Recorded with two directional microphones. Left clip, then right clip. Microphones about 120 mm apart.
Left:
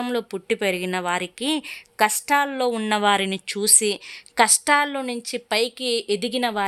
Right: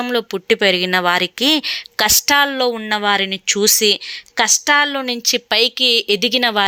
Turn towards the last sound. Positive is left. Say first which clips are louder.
# right 8 dB
turn(degrees=-10)  # may be behind; listen again after turning